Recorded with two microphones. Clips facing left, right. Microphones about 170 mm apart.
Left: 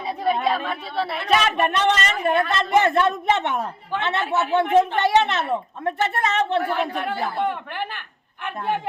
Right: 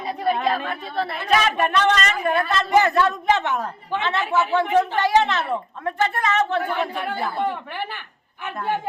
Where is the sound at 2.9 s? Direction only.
25° left (ahead or behind).